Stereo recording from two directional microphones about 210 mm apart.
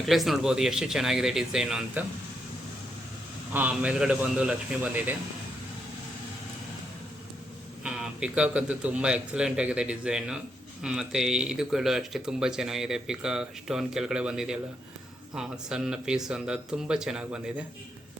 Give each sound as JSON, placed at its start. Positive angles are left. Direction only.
{"t": 0.0, "sound": "speech", "side_deg": 0}
{"t": 3.5, "sound": "speech", "side_deg": -5}
{"t": 7.9, "sound": "speech", "side_deg": -5}